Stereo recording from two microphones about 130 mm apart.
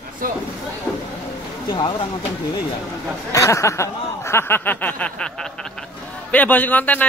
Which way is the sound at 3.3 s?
25° left (ahead or behind).